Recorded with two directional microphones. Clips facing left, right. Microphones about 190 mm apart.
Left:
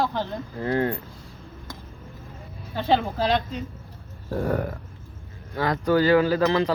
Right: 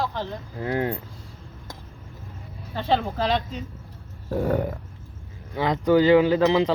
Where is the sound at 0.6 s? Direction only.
10° right (ahead or behind).